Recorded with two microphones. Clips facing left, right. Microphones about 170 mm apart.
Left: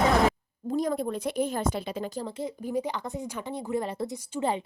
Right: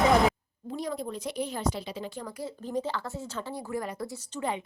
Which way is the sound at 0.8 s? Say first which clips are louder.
Left 6 dB; 50° left (ahead or behind).